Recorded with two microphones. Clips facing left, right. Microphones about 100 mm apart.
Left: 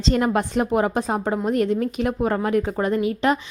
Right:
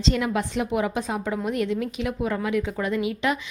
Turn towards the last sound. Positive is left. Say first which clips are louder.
# left 4 dB
turn(degrees=40)  # may be behind; listen again after turning